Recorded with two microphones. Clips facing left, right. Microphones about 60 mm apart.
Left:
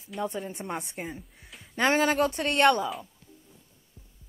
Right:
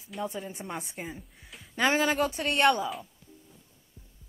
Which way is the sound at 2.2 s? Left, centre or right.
Left.